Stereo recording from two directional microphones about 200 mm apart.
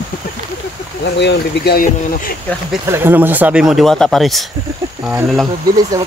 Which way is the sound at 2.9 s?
10° right (ahead or behind).